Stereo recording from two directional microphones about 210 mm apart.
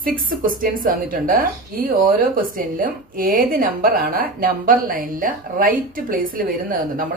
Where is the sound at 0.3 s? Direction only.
40° right (ahead or behind).